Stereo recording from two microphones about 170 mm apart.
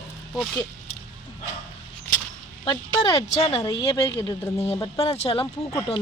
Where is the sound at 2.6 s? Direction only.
25° left (ahead or behind).